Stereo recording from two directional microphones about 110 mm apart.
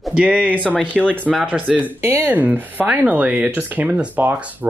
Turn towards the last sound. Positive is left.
turn(degrees=-15)  # may be behind; listen again after turning